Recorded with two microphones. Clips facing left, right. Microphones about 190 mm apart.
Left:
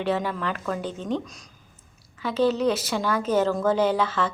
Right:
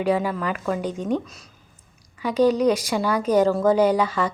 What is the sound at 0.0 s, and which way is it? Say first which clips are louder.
A woman's voice: right 4 dB; 10° right (ahead or behind).